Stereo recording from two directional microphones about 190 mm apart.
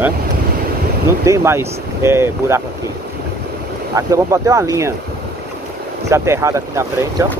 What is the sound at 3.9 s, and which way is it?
Speech, 15° right (ahead or behind).